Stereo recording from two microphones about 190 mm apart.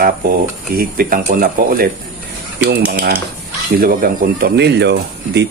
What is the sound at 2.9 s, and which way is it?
Speech, 50° right (ahead or behind).